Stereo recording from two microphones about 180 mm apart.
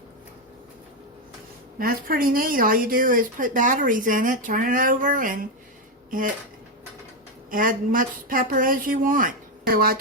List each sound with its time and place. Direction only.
1.8 s speech: 55° right (ahead or behind)
7.5 s speech: 50° right (ahead or behind)